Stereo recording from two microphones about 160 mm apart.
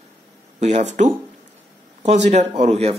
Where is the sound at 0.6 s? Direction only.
45° right (ahead or behind).